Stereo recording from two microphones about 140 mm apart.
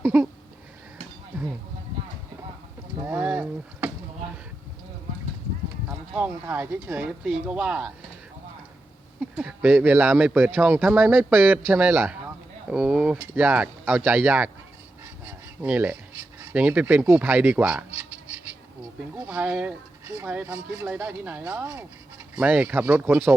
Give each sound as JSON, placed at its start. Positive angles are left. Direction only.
{"t": 0.0, "sound": "a sound", "side_deg": -15}
{"t": 3.0, "sound": "boat", "side_deg": -15}
{"t": 6.1, "sound": "speech", "side_deg": -10}
{"t": 9.4, "sound": "speech", "side_deg": -10}
{"t": 15.2, "sound": "a sound", "side_deg": -10}
{"t": 16.4, "sound": "speech", "side_deg": -10}
{"t": 19.1, "sound": "speech", "side_deg": -15}